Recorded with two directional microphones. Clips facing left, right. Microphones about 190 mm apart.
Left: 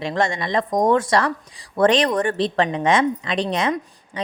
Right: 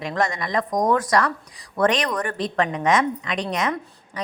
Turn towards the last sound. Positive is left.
turn(degrees=30)  # may be behind; listen again after turning